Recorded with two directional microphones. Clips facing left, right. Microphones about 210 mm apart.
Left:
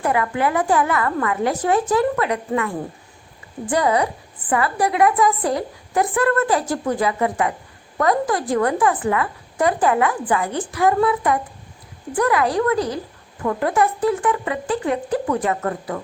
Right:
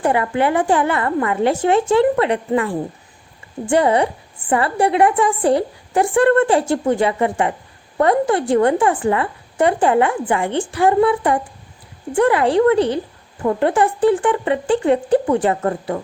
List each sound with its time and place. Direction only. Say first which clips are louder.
0.0 s a woman's voice: right 3 dB; 30° right (ahead or behind)